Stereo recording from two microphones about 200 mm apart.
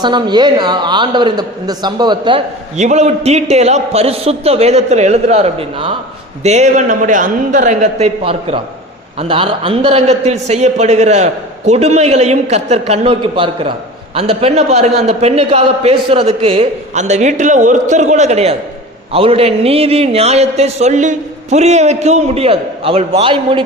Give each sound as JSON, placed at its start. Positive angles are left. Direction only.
{"t": 0.0, "sound": "a woman's voice", "side_deg": -20}